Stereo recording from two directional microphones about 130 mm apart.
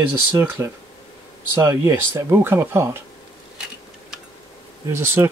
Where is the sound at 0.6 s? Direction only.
20° right (ahead or behind).